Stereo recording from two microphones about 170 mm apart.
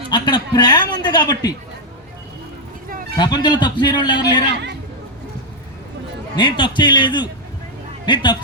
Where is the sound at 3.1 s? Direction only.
25° left (ahead or behind).